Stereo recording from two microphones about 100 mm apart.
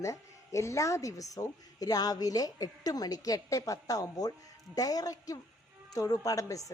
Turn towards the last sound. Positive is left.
turn(degrees=35)  # may be behind; listen again after turning